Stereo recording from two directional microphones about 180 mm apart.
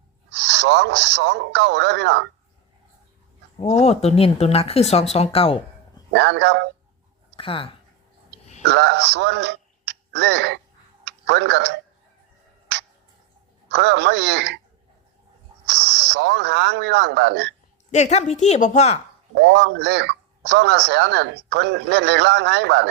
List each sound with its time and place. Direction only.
0.3 s a man's voice: 75° right (ahead or behind)
3.6 s speech: 35° left (ahead or behind)
6.1 s a man's voice: 75° right (ahead or behind)
7.3 s speech: 30° left (ahead or behind)
8.6 s a man's voice: 70° right (ahead or behind)
13.7 s a man's voice: 75° right (ahead or behind)
15.6 s speech: 75° right (ahead or behind)
17.9 s speech: 40° left (ahead or behind)
19.4 s a man's voice: 75° right (ahead or behind)